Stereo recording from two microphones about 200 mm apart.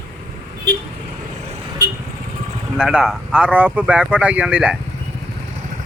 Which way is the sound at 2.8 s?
Centre (ahead or behind).